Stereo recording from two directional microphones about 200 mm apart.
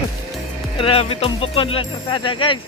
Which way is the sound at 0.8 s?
30° left (ahead or behind).